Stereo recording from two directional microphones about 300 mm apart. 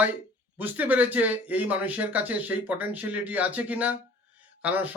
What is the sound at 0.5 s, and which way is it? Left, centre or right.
Speech, centre.